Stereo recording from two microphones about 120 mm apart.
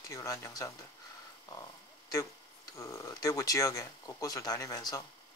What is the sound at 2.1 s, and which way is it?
Speech, 30° left (ahead or behind).